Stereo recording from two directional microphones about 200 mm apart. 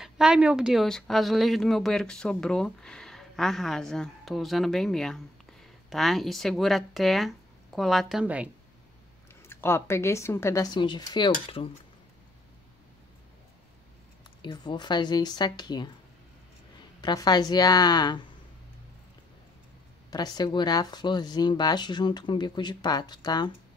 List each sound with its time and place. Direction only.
0.0 s speech: 5° right (ahead or behind)
9.5 s speech: 10° left (ahead or behind)
14.4 s speech: 20° left (ahead or behind)
17.0 s speech: 20° left (ahead or behind)
20.1 s speech: 20° left (ahead or behind)